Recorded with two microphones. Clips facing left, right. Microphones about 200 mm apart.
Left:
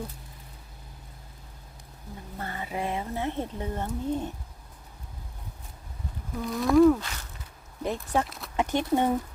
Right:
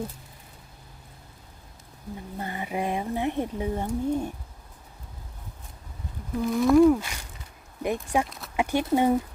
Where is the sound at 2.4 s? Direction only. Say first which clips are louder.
Right 2 dB; 15° right (ahead or behind).